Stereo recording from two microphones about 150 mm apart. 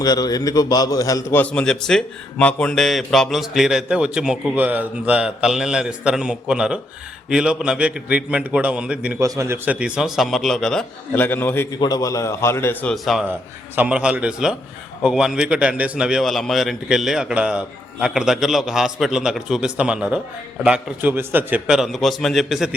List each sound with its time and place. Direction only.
0.0 s a man's voice: 25° left (ahead or behind); by 9.2 s 10° right (ahead or behind)
9.2 s a man's voice: 20° right (ahead or behind)
9.6 s a man's voice: 5° right (ahead or behind); by 11.7 s 15° left (ahead or behind)
11.8 s a man's voice: 25° left (ahead or behind)
12.9 s a man's voice: centre (ahead or behind)